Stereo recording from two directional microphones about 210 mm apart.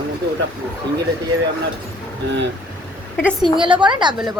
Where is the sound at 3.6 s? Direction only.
20° right (ahead or behind).